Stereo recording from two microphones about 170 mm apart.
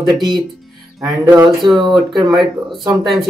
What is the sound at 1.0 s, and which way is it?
Music, 15° right (ahead or behind).